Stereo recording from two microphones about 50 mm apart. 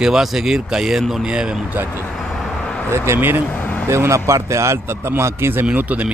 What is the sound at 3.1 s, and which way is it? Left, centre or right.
Speech, right.